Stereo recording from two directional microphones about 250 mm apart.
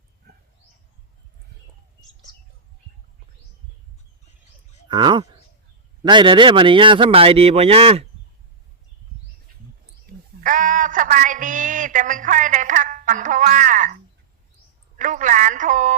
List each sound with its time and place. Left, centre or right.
4.9 s speech: centre
10.1 s a sound: right
14.9 s speech: right